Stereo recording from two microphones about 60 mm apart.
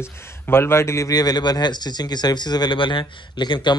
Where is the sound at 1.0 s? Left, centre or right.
Left.